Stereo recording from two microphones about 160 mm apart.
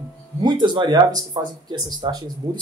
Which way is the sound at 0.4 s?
25° right (ahead or behind).